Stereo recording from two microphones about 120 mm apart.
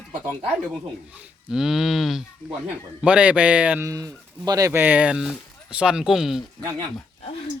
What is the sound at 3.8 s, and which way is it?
Speech, 30° right (ahead or behind).